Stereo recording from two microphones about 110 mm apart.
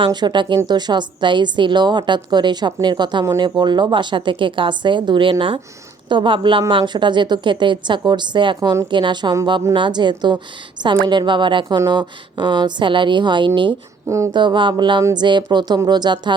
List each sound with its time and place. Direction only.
0.0 s a woman's voice: 40° right (ahead or behind)